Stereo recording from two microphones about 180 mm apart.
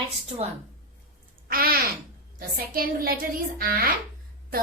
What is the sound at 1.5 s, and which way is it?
Babbling, 55° right (ahead or behind).